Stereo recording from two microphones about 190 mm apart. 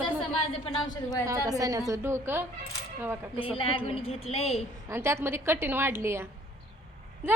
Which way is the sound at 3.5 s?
30° left (ahead or behind).